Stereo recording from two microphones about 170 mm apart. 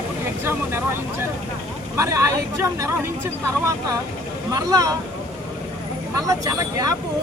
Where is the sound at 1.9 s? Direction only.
15° right (ahead or behind).